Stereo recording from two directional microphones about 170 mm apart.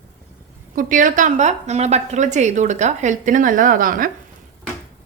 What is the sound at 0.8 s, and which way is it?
A woman's voice, 50° right (ahead or behind).